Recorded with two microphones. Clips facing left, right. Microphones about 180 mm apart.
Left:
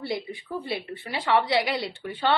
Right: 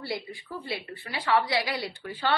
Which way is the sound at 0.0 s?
20° left (ahead or behind).